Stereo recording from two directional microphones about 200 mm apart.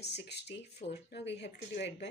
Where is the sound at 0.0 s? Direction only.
60° left (ahead or behind).